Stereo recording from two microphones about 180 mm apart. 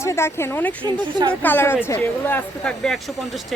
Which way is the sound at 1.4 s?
10° left (ahead or behind).